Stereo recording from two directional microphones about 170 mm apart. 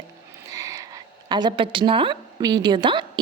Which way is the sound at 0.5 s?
20° right (ahead or behind).